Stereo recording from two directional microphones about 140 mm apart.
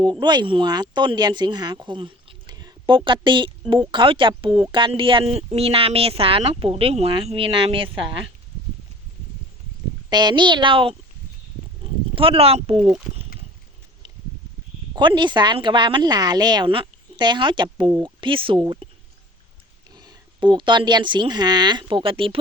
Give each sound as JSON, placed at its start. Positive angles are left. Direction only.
{"t": 0.0, "sound": "speech", "side_deg": -35}
{"t": 10.1, "sound": "speech", "side_deg": -30}
{"t": 11.8, "sound": "a sound", "side_deg": -40}
{"t": 14.9, "sound": "speech", "side_deg": -35}
{"t": 19.9, "sound": "speech", "side_deg": -30}